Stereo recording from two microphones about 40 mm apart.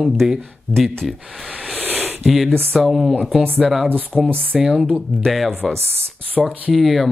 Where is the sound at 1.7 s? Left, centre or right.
Right.